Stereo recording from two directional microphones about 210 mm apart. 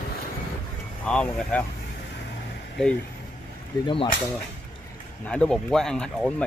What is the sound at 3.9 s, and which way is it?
Speech, 25° left (ahead or behind).